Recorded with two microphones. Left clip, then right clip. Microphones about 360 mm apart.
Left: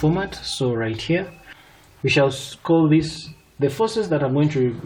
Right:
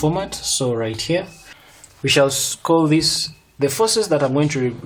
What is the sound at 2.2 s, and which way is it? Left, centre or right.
Speech, right.